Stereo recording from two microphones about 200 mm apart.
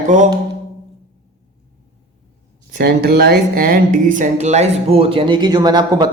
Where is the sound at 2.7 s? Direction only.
50° right (ahead or behind).